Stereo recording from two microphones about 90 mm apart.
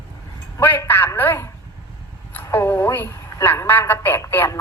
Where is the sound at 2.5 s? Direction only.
25° left (ahead or behind).